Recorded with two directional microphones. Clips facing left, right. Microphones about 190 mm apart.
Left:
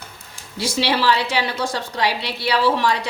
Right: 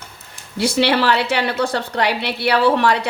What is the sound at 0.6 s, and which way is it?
A woman's voice, 60° right (ahead or behind).